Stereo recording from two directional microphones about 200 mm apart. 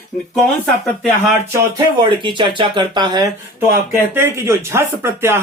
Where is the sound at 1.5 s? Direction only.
20° right (ahead or behind).